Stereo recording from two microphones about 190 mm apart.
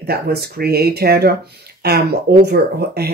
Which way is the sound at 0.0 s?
55° right (ahead or behind).